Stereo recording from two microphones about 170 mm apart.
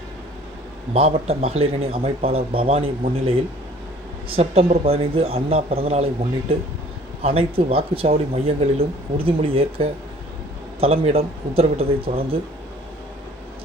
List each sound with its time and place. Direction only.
0.9 s speech: 35° right (ahead or behind)
4.4 s speech: 35° right (ahead or behind)
7.2 s speech: 35° right (ahead or behind)